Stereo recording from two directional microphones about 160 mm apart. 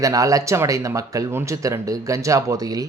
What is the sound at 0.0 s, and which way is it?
Speech, 20° right (ahead or behind).